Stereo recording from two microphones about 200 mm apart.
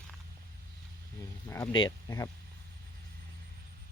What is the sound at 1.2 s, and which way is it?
Speech, 15° left (ahead or behind).